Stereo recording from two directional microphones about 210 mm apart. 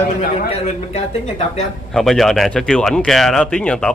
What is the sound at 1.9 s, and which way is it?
Speech, centre (ahead or behind).